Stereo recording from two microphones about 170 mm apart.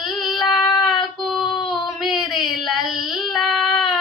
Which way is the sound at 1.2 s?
Centre (ahead or behind).